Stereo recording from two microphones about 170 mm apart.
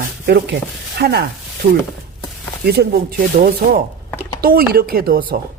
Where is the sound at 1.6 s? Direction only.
35° right (ahead or behind).